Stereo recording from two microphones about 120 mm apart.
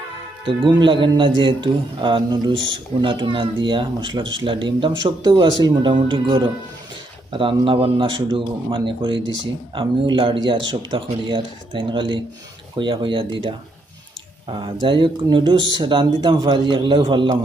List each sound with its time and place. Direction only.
0.4 s speech: 45° right (ahead or behind)